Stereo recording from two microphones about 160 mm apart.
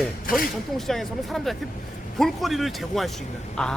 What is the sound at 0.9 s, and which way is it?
Speech, centre (ahead or behind).